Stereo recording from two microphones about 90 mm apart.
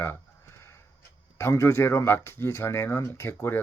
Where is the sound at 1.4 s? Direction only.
30° left (ahead or behind).